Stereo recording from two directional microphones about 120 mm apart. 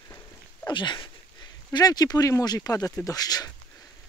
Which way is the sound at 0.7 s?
40° left (ahead or behind).